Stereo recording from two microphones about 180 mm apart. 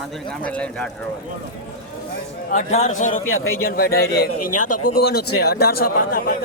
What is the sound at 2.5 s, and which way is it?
A man's voice, 45° left (ahead or behind).